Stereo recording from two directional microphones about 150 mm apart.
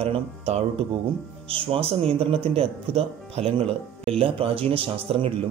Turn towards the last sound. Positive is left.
turn(degrees=-35)  # may be behind; listen again after turning